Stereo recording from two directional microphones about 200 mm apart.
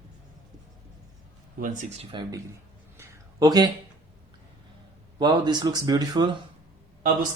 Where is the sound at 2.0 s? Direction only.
25° right (ahead or behind).